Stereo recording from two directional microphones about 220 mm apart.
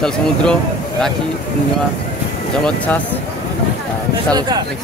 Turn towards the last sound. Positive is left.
turn(degrees=-20)  # may be behind; listen again after turning